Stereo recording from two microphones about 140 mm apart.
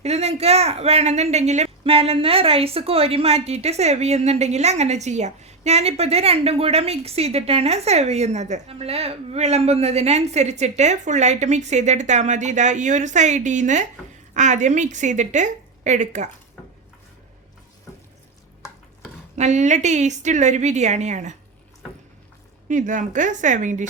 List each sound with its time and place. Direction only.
0.0 s a woman's voice: 50° right (ahead or behind)
19.4 s a woman's voice: 60° right (ahead or behind)
22.7 s a woman's voice: 65° right (ahead or behind)